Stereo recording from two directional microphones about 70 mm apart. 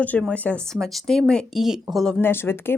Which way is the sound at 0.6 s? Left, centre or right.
Centre.